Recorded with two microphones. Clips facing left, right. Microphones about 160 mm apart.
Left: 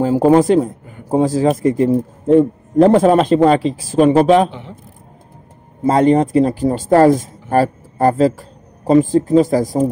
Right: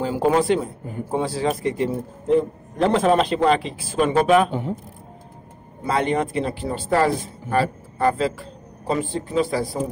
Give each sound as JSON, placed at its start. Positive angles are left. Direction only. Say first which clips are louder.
{"t": 0.0, "sound": "a man's voice", "louder": "left 8 dB", "side_deg": 40}
{"t": 4.5, "sound": "speech", "louder": "right 7 dB", "side_deg": -45}
{"t": 5.9, "sound": "speech", "louder": "left 9 dB", "side_deg": 40}